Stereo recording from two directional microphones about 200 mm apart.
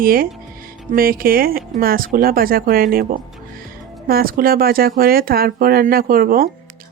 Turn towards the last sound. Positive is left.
turn(degrees=-45)  # may be behind; listen again after turning